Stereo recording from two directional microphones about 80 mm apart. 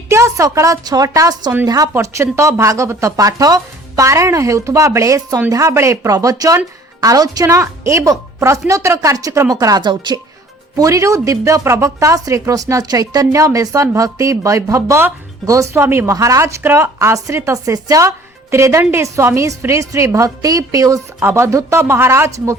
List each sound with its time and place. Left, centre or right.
0.1 s a woman's voice: right
1.9 s a woman's voice: right
9.8 s speech: right
10.8 s a woman's voice: right
16.1 s speech: right
21.2 s speech: right